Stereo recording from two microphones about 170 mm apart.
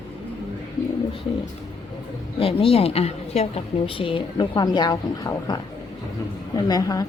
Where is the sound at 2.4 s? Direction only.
35° left (ahead or behind).